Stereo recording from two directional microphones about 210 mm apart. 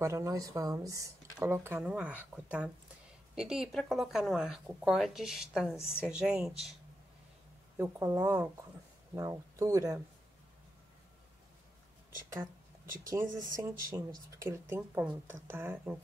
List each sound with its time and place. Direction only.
0.0 s speech: 15° right (ahead or behind)
7.7 s speech: 10° right (ahead or behind)
13.6 s speech: 15° right (ahead or behind)